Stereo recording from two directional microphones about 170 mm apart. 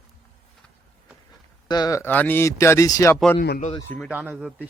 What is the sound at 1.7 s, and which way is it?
Speech, 20° left (ahead or behind).